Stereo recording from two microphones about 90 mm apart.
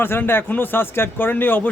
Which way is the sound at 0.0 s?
25° left (ahead or behind).